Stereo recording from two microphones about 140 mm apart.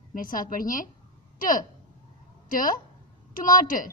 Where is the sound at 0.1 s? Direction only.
75° left (ahead or behind).